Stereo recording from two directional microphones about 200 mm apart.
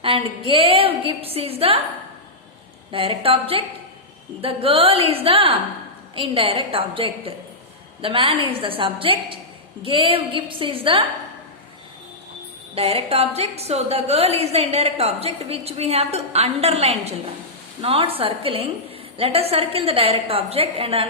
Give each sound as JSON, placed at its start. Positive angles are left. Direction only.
{"t": 0.0, "sound": "a woman's voice", "side_deg": -25}
{"t": 2.9, "sound": "a woman's voice", "side_deg": -25}
{"t": 12.7, "sound": "a woman's voice", "side_deg": -30}